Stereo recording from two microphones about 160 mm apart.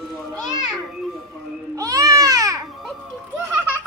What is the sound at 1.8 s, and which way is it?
Baby cry, 20° right (ahead or behind).